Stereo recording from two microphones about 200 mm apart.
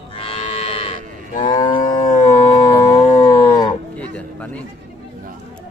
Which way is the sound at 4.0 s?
5° left (ahead or behind).